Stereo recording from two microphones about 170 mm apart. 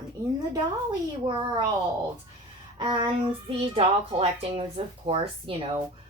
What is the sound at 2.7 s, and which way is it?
A woman's voice, 25° right (ahead or behind).